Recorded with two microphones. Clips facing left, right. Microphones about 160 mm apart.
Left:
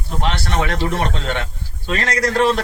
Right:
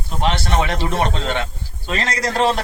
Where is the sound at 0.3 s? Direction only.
25° right (ahead or behind).